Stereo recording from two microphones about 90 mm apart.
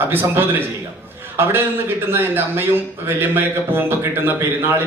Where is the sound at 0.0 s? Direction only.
25° right (ahead or behind).